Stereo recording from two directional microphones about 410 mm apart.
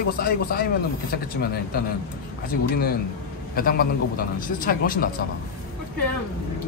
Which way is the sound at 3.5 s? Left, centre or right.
Left.